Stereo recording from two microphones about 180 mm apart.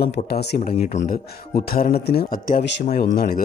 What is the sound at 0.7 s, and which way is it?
Speech, 45° left (ahead or behind).